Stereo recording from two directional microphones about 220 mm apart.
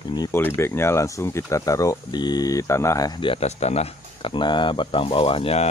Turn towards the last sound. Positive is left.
turn(degrees=25)  # may be behind; listen again after turning